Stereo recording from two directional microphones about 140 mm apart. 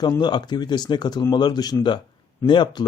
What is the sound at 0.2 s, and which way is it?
Speech, 30° left (ahead or behind).